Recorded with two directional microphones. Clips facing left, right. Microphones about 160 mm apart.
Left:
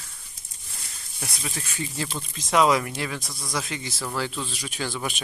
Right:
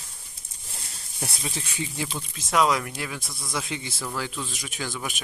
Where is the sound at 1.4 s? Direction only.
20° right (ahead or behind).